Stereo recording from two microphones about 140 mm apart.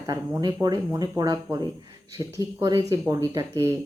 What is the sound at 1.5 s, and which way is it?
Speech, 10° right (ahead or behind).